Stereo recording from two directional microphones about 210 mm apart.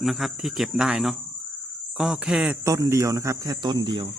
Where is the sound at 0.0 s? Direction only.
Centre (ahead or behind).